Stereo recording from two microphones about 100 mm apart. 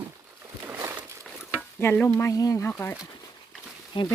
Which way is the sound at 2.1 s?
35° left (ahead or behind).